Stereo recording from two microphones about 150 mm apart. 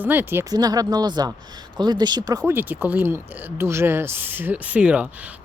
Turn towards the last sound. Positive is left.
turn(degrees=-10)  # may be behind; listen again after turning